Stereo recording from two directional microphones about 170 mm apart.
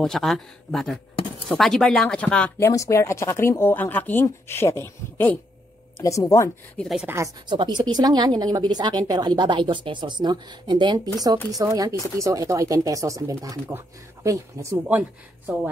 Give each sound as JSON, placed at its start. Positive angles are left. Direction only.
{"t": 0.0, "sound": "speech", "side_deg": 0}
{"t": 2.7, "sound": "speech", "side_deg": 20}
{"t": 6.8, "sound": "speech", "side_deg": 0}
{"t": 7.4, "sound": "speech", "side_deg": -25}